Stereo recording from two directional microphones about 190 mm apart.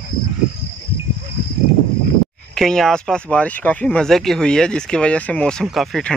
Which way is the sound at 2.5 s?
5° left (ahead or behind).